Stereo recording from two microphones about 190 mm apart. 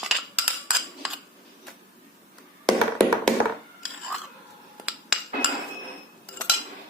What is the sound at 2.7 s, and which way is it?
Tap, 5° left (ahead or behind).